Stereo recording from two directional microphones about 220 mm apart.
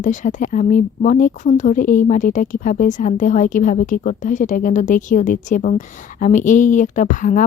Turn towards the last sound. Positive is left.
turn(degrees=35)  # may be behind; listen again after turning